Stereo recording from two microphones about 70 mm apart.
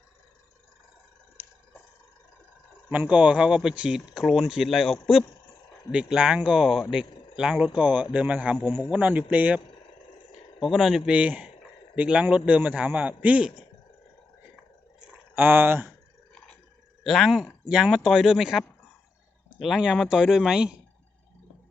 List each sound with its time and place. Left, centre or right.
3.1 s speech: centre
7.8 s a man's voice: right
10.6 s speech: centre
11.1 s a man's voice: centre
15.4 s speech: right
17.0 s speech: centre
17.7 s speech: centre